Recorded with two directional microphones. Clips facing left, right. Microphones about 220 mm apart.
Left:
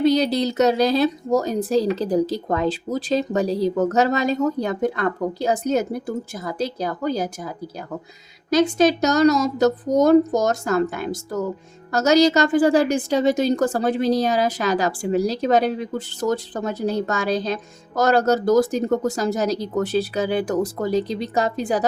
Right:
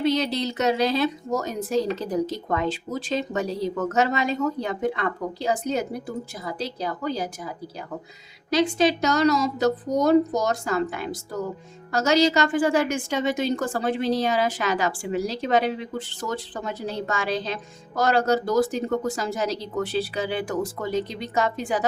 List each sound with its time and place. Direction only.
0.0 s a woman's voice: 40° left (ahead or behind)